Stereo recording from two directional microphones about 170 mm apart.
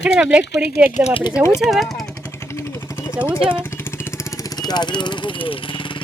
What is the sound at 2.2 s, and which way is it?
Vehicle, 15° left (ahead or behind).